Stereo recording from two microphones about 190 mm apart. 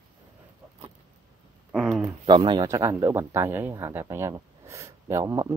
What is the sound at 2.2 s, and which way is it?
Speech, 25° right (ahead or behind).